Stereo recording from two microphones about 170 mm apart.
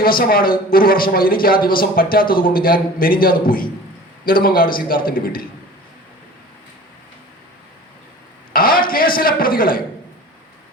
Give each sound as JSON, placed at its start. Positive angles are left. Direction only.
{"t": 0.0, "sound": "a man's voice", "side_deg": 60}
{"t": 8.5, "sound": "a man's voice", "side_deg": 60}